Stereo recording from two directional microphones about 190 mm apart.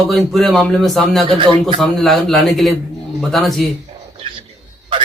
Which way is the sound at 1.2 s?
30° right (ahead or behind).